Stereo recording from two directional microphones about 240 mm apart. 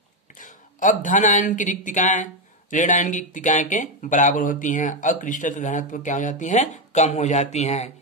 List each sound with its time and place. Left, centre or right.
0.4 s speech: left